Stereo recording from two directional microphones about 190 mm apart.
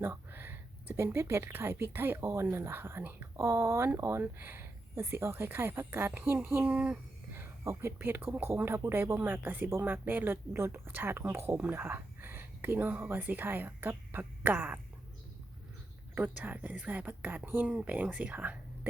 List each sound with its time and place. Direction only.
0.0 s speech: 10° right (ahead or behind)
16.1 s speech: 10° right (ahead or behind)